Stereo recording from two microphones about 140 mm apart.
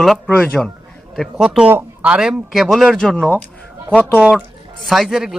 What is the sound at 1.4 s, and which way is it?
A man's voice, 5° right (ahead or behind).